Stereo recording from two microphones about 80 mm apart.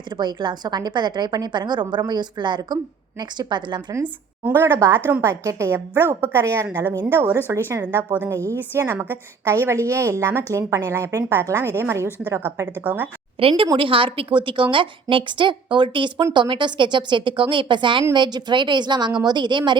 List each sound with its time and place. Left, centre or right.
0.2 s a woman's voice: right
4.0 s a woman's voice: right
12.8 s a woman's voice: centre
13.7 s a woman's voice: right
18.1 s a woman's voice: right